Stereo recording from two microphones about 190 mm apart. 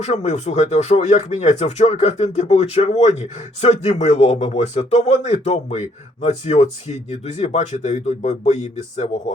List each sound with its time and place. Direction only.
0.0 s speech: 35° left (ahead or behind)